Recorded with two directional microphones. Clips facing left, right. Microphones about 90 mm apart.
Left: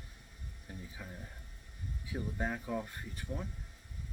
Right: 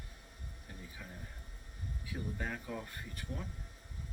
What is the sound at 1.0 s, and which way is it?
Speech, 10° left (ahead or behind).